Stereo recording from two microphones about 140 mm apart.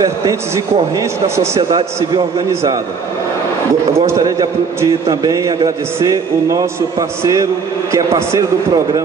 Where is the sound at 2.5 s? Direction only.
20° right (ahead or behind).